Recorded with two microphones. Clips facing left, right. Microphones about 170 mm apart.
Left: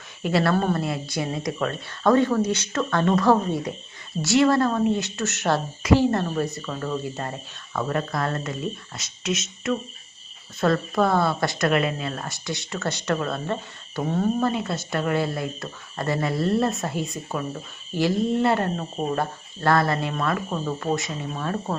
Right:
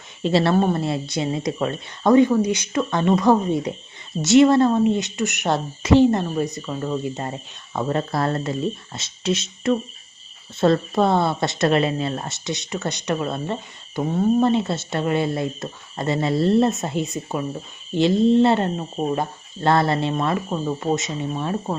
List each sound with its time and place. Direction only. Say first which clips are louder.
0.2 s a woman's voice: right 3 dB; 25° right (ahead or behind)
14.4 s a woman's voice: right 5 dB; 25° right (ahead or behind)